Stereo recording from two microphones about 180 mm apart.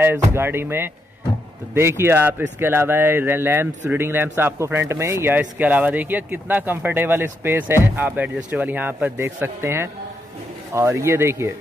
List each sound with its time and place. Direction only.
0.0 s speech: 10° right (ahead or behind)